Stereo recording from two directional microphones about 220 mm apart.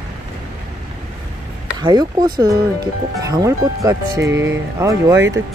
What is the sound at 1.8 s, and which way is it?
Speech, 20° right (ahead or behind).